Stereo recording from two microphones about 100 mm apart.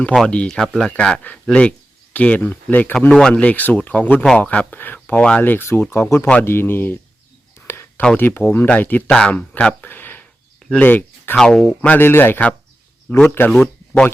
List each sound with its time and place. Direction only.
0.3 s speech: 10° left (ahead or behind)
3.1 s speech: 5° left (ahead or behind); by 7.0 s 20° left (ahead or behind)
7.7 s a sound: 20° left (ahead or behind)
8.0 s speech: 20° left (ahead or behind)
9.9 s a sound: 20° left (ahead or behind)
10.7 s speech: 15° left (ahead or behind)
11.3 s speech: 5° left (ahead or behind)
11.8 s speech: 20° left (ahead or behind)
13.6 s a sound: 15° left (ahead or behind)